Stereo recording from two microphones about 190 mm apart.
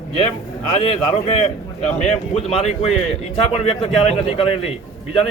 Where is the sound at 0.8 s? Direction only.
35° left (ahead or behind).